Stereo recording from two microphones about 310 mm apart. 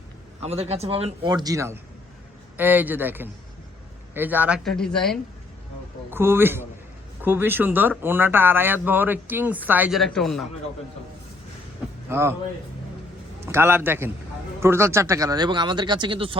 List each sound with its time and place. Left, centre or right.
0.4 s speech: centre
12.0 s speech: centre
13.4 s speech: centre